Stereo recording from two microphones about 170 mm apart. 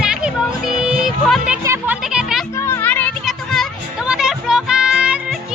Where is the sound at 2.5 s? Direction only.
15° left (ahead or behind).